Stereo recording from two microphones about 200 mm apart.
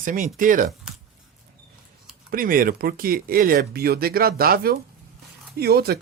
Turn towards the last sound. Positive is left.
turn(degrees=-50)  # may be behind; listen again after turning